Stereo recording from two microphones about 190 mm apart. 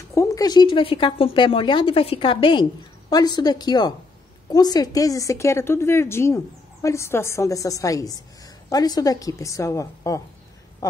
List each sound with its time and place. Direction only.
0.1 s a woman's voice: 15° left (ahead or behind)